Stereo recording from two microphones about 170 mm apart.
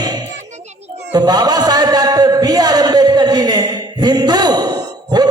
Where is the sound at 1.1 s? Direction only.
25° right (ahead or behind).